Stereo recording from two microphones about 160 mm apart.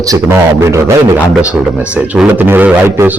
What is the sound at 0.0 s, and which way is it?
Speech, 20° right (ahead or behind).